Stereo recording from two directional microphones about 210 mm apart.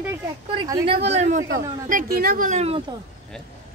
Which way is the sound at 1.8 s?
45° right (ahead or behind).